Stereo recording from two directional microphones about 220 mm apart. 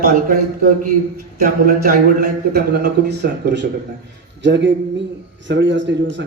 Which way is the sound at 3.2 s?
50° right (ahead or behind).